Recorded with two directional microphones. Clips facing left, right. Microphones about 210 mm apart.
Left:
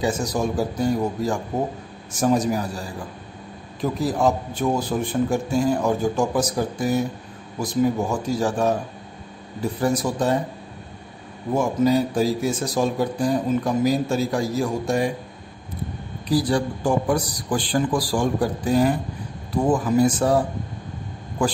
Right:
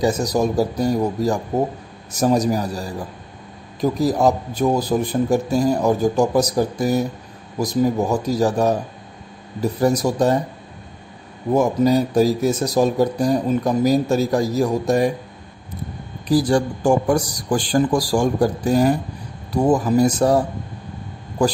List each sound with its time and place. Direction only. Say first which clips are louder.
0.0 s a man's voice: right 4 dB; 40° right (ahead or behind)
4.0 s a man's voice: right 3 dB; 40° right (ahead or behind)
11.5 s a man's voice: right 3 dB; 40° right (ahead or behind)
16.3 s a man's voice: right 4 dB; 45° right (ahead or behind)
21.4 s a man's voice: right 4 dB; 40° right (ahead or behind)